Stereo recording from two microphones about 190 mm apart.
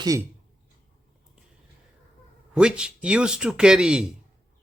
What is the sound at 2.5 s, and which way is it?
Speech, 5° right (ahead or behind).